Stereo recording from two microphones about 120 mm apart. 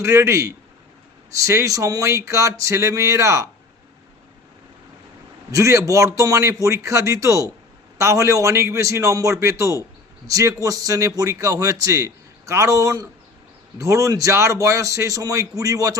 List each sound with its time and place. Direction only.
0.0 s a man's voice: 20° right (ahead or behind)
5.5 s a man's voice: 25° right (ahead or behind)